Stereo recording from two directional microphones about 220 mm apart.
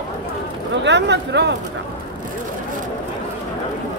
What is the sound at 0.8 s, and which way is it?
Speech, 50° right (ahead or behind).